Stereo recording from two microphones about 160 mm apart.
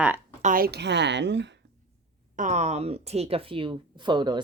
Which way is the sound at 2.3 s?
50° right (ahead or behind).